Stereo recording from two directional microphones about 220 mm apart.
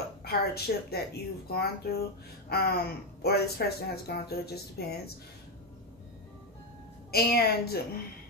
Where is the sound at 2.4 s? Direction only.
45° left (ahead or behind).